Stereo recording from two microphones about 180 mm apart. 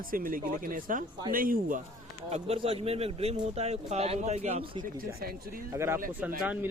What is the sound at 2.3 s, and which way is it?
Speech, 35° right (ahead or behind).